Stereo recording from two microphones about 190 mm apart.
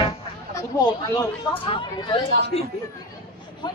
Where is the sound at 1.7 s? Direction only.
25° left (ahead or behind).